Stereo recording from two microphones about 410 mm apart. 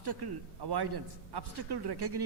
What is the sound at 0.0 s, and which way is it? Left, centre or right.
A man's voice, right.